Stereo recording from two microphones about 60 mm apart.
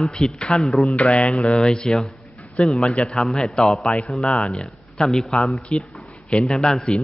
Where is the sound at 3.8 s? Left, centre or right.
Centre.